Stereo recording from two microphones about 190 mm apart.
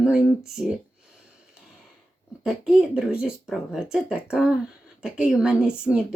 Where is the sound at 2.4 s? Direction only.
5° right (ahead or behind).